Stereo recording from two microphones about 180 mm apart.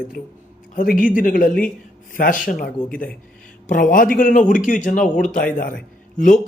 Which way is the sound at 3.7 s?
50° left (ahead or behind).